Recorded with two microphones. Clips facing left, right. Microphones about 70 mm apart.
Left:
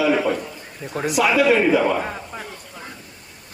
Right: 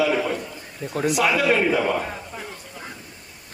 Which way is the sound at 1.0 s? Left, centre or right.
Left.